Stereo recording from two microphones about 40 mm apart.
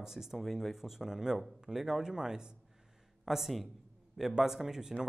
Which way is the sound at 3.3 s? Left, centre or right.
Centre.